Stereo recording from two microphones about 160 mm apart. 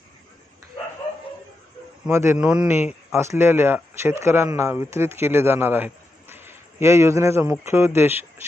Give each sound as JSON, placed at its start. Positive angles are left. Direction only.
{"t": 2.0, "sound": "a man's voice", "side_deg": -15}